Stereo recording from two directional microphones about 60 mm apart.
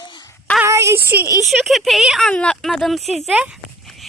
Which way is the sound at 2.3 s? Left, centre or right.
Centre.